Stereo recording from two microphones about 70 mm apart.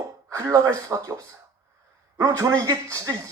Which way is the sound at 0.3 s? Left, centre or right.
Right.